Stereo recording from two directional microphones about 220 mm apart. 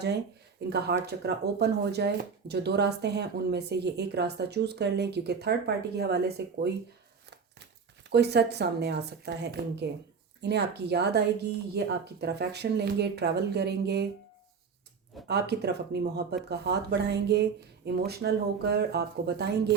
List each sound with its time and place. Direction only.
0.7 s speech: 50° right (ahead or behind)
8.1 s speech: 50° right (ahead or behind)
15.3 s speech: 50° right (ahead or behind)